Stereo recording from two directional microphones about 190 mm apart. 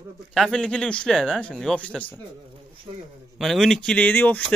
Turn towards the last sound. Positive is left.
turn(degrees=10)  # may be behind; listen again after turning